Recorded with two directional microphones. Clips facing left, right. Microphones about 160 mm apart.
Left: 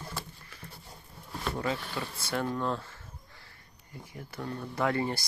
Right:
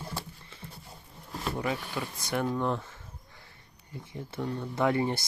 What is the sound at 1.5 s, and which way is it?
Speech, 15° right (ahead or behind).